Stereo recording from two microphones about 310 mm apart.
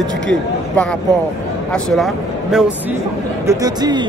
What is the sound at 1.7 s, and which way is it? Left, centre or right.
Speech, centre.